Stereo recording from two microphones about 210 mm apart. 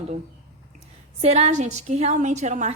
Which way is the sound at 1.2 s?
30° right (ahead or behind).